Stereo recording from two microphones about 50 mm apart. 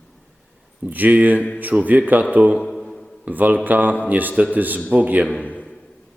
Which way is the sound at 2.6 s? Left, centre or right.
Centre.